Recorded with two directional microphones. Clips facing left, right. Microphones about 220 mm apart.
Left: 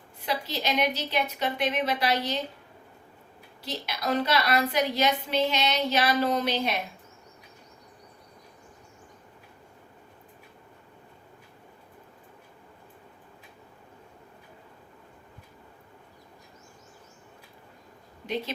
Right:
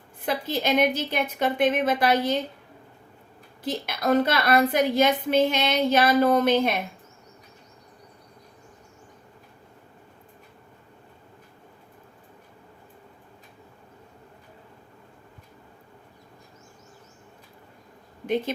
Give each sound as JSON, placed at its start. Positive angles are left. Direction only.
{"t": 0.2, "sound": "a woman's voice", "side_deg": -50}
{"t": 3.6, "sound": "a woman's voice", "side_deg": -50}